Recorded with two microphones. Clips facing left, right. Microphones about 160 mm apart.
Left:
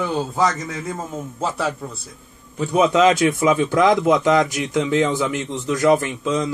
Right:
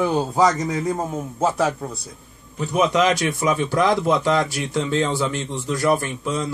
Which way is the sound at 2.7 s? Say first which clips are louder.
Left 3 dB; 25° left (ahead or behind).